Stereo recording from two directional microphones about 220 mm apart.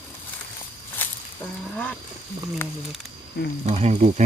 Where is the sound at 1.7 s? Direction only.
5° left (ahead or behind).